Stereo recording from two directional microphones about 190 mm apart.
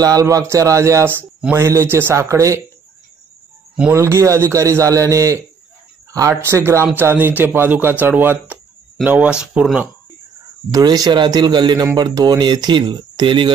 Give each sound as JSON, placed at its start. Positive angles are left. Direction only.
{"t": 0.0, "sound": "speech", "side_deg": -20}
{"t": 3.9, "sound": "speech", "side_deg": -15}
{"t": 10.7, "sound": "a man's voice", "side_deg": -20}